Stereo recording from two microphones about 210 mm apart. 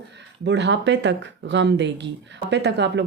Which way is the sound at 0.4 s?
55° right (ahead or behind).